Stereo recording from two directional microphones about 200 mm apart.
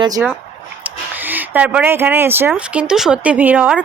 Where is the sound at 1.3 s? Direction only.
5° right (ahead or behind).